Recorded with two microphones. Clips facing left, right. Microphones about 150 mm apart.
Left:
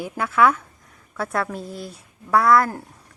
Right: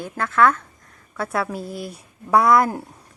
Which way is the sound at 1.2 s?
5° right (ahead or behind).